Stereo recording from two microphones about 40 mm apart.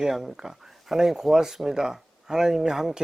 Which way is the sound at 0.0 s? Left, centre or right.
Centre.